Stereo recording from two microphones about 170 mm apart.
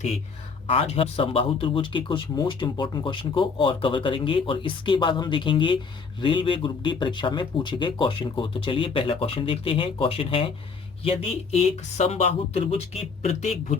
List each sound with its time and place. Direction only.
0.7 s speech: 35° left (ahead or behind)